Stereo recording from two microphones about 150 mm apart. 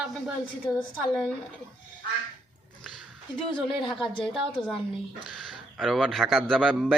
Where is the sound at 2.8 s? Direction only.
Centre (ahead or behind).